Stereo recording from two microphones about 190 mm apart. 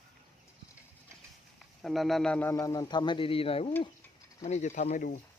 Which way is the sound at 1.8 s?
Centre (ahead or behind).